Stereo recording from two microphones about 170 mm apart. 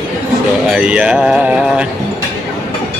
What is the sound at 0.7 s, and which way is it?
Speech, 5° right (ahead or behind).